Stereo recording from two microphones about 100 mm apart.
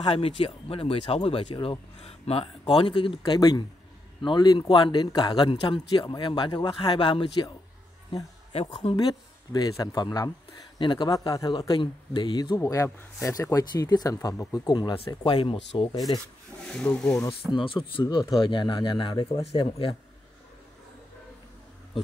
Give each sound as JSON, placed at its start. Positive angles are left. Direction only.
{"t": 0.0, "sound": "speech", "side_deg": 75}
{"t": 3.3, "sound": "speech", "side_deg": 45}
{"t": 5.5, "sound": "speech", "side_deg": 65}
{"t": 8.9, "sound": "speech", "side_deg": 45}
{"t": 10.8, "sound": "speech", "side_deg": 55}
{"t": 11.1, "sound": "speech", "side_deg": 35}
{"t": 12.5, "sound": "speech", "side_deg": 30}
{"t": 16.6, "sound": "speech", "side_deg": 10}
{"t": 17.3, "sound": "speech", "side_deg": 60}
{"t": 18.0, "sound": "speech", "side_deg": 45}